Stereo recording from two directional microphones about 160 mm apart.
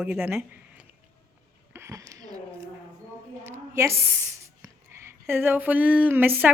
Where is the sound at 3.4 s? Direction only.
15° right (ahead or behind).